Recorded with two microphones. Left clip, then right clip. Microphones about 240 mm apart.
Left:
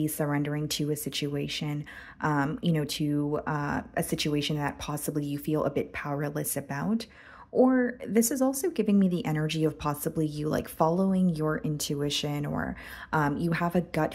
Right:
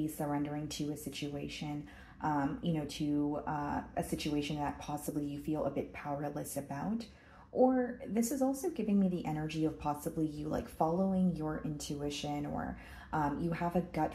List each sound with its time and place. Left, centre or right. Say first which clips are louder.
0.0 s speech: left 7 dB; left